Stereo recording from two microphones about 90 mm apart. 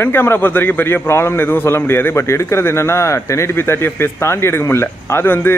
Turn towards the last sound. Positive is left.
turn(degrees=25)  # may be behind; listen again after turning